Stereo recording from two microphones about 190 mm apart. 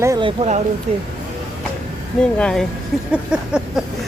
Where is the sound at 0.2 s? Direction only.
30° right (ahead or behind).